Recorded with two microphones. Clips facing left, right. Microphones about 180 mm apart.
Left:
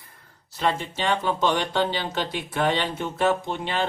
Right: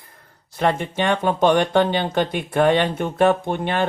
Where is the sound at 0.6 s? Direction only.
55° right (ahead or behind).